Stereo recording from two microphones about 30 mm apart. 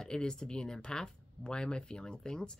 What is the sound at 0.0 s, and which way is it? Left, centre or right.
Speech, left.